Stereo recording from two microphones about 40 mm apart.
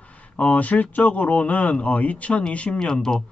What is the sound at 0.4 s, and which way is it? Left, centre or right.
Speech, left.